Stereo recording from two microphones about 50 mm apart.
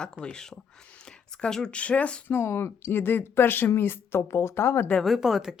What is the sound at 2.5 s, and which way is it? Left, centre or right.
Speech, left.